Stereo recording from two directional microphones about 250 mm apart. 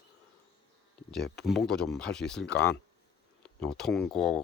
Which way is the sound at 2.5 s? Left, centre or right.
Left.